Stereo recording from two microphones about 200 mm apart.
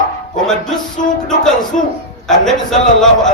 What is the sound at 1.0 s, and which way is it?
Music, 40° left (ahead or behind).